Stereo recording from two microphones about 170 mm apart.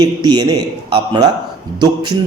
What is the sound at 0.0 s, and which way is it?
Speech, 25° right (ahead or behind).